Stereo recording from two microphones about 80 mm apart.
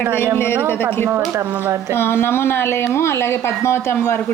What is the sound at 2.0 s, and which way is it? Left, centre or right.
Speech, left.